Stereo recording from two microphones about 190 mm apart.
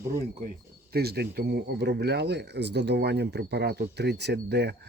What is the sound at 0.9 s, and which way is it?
Speech, 55° right (ahead or behind).